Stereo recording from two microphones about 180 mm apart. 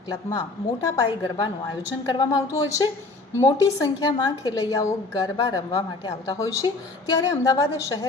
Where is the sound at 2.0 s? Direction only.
20° left (ahead or behind).